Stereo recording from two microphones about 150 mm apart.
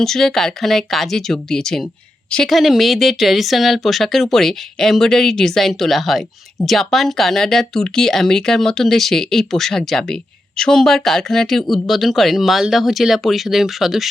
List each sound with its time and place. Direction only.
0.0 s a woman's voice: 5° left (ahead or behind)